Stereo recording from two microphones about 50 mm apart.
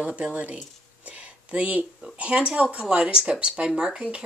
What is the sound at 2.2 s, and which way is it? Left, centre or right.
Speech, right.